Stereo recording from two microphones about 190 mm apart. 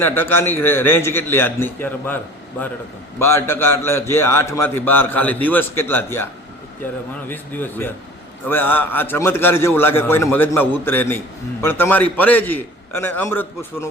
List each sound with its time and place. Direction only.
0.0 s a man's voice: 10° left (ahead or behind)
3.2 s a man's voice: 15° left (ahead or behind)
7.3 s a man's voice: 10° left (ahead or behind)